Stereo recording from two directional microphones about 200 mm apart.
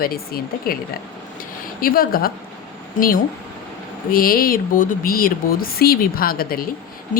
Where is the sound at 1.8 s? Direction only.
45° left (ahead or behind).